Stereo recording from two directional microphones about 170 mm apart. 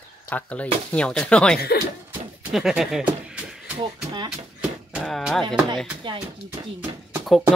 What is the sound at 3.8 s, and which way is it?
Speech, 25° right (ahead or behind).